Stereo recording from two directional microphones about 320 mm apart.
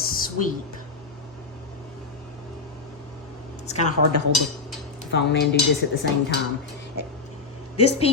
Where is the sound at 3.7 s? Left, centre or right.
Left.